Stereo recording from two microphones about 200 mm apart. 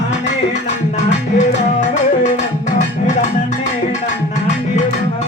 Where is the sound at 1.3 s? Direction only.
35° left (ahead or behind).